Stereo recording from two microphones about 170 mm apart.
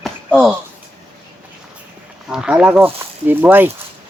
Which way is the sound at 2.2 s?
5° right (ahead or behind).